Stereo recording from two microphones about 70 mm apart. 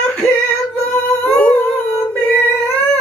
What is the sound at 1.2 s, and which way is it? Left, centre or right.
Humming, centre.